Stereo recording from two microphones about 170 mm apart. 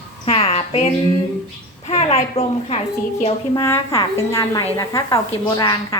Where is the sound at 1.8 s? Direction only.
35° left (ahead or behind).